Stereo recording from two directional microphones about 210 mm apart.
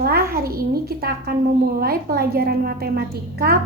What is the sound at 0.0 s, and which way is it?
A child's voice, 45° right (ahead or behind).